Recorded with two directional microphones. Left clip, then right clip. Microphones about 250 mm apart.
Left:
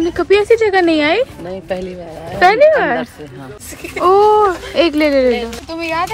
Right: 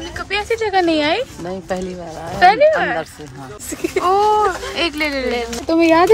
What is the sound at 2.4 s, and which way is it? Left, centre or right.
Speech, left.